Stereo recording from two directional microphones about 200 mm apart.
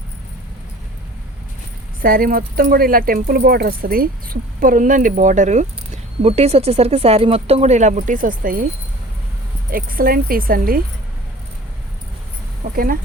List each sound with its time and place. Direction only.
2.0 s speech: 45° right (ahead or behind)
9.7 s speech: 45° right (ahead or behind)
12.7 s speech: 45° right (ahead or behind)